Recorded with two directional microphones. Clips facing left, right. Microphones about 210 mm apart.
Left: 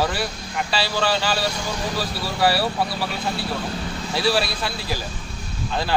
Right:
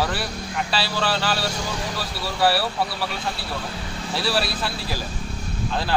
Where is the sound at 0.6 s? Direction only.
Centre (ahead or behind).